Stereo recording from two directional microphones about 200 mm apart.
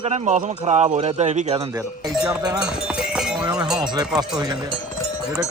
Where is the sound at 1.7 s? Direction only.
15° right (ahead or behind).